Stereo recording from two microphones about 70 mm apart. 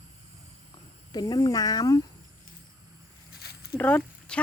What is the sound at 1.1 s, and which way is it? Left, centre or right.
Speech, left.